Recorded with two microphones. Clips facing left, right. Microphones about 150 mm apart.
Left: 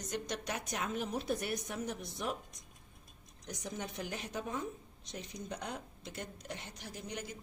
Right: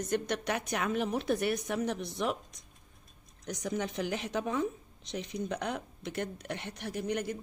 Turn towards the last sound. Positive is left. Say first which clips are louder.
# right 10 dB
turn(degrees=-60)  # may be behind; listen again after turning